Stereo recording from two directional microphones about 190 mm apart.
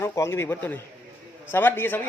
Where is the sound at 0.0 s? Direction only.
15° left (ahead or behind).